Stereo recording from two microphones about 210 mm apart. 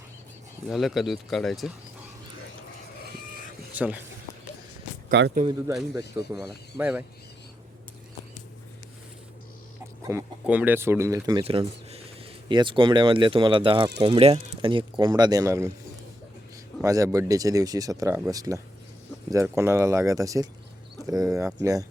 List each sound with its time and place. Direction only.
0.7 s speech: centre (ahead or behind)
3.8 s speech: 5° right (ahead or behind)
5.1 s speech: 55° right (ahead or behind)
6.3 s speech: 5° right (ahead or behind)
10.0 s speech: 15° right (ahead or behind)
16.8 s speech: 15° right (ahead or behind)